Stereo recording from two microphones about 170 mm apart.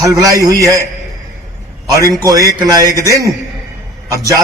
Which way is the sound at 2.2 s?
20° right (ahead or behind).